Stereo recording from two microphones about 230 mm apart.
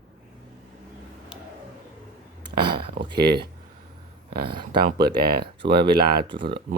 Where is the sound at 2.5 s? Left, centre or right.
Right.